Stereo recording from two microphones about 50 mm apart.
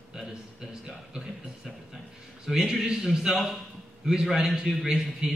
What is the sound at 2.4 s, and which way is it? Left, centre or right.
A man's voice, centre.